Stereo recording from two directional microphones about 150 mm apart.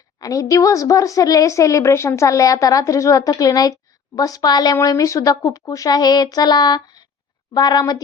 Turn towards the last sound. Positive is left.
turn(degrees=25)  # may be behind; listen again after turning